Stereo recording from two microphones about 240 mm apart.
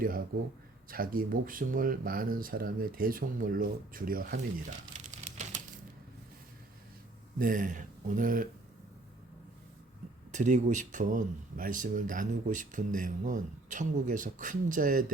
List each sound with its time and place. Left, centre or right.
0.9 s speech: right
7.3 s speech: right
10.3 s speech: right